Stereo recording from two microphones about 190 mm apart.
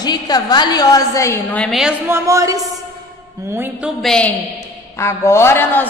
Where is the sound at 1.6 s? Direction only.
Centre (ahead or behind).